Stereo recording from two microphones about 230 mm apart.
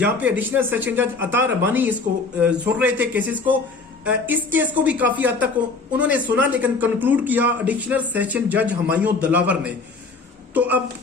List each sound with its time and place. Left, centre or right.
0.0 s a man's voice: centre